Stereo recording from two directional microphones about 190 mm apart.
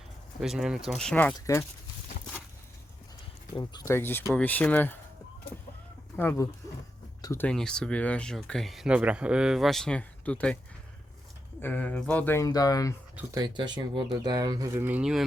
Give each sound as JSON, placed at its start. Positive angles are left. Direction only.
{"t": 0.4, "sound": "speech", "side_deg": 0}
{"t": 3.5, "sound": "speech", "side_deg": 20}
{"t": 6.1, "sound": "speech", "side_deg": 10}
{"t": 11.6, "sound": "speech", "side_deg": 10}
{"t": 13.3, "sound": "speech", "side_deg": -25}